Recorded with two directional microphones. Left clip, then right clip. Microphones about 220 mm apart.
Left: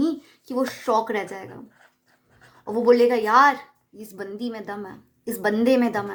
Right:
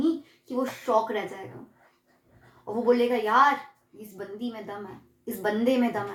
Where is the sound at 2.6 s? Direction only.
35° left (ahead or behind).